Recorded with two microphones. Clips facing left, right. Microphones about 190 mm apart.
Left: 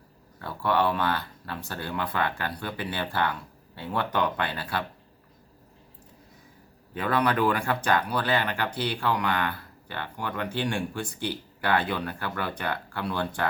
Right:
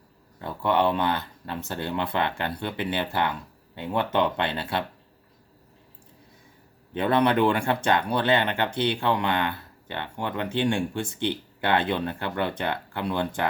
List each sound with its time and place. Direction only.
0.4 s speech: 20° right (ahead or behind)
6.9 s speech: 25° right (ahead or behind)